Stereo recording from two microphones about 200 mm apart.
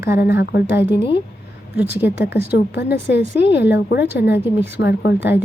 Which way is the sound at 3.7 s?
55° left (ahead or behind).